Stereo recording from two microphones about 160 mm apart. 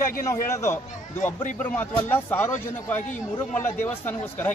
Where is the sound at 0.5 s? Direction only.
20° left (ahead or behind).